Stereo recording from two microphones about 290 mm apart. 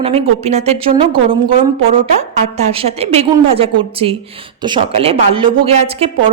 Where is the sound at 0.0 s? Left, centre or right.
Right.